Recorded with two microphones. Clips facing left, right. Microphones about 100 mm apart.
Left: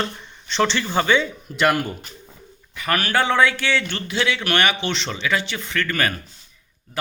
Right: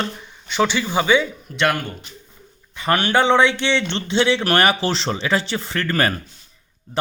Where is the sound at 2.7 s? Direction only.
25° right (ahead or behind).